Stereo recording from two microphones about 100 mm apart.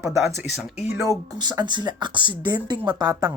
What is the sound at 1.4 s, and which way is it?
Speech, 45° right (ahead or behind).